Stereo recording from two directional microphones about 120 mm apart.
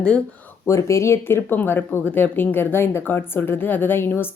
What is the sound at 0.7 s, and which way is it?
Speech, 25° left (ahead or behind).